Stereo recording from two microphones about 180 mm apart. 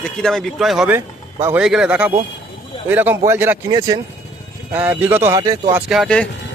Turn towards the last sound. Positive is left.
turn(degrees=0)  # may be behind; listen again after turning